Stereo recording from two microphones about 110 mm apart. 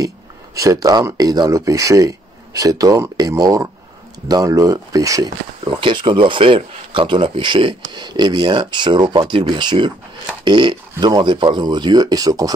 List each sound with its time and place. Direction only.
0.6 s speech: 30° right (ahead or behind)
5.8 s speech: 50° right (ahead or behind)